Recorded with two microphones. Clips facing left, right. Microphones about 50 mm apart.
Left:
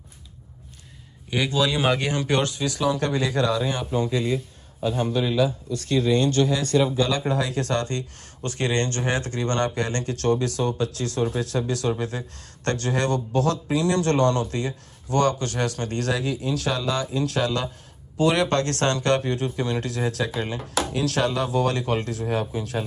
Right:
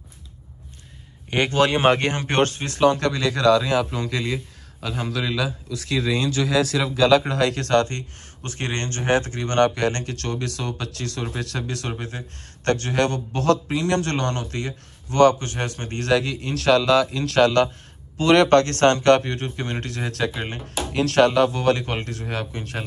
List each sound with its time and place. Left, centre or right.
1.3 s a man's voice: right
8.4 s speech: right
16.1 s speech: right